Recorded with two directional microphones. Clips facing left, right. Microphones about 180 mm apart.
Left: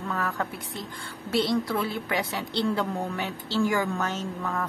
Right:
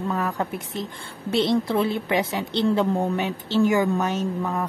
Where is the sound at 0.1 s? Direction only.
20° right (ahead or behind).